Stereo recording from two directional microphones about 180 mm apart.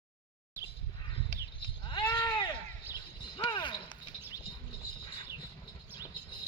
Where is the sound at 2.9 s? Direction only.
25° left (ahead or behind).